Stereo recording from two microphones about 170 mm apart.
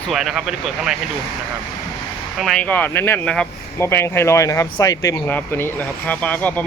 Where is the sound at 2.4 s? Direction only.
5° left (ahead or behind).